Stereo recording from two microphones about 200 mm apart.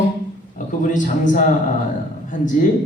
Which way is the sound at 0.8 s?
40° left (ahead or behind).